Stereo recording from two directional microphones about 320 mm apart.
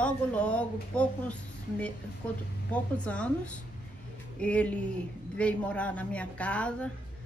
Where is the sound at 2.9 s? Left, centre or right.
Centre.